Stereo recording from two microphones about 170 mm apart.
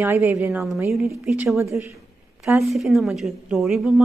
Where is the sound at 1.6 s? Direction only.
15° right (ahead or behind).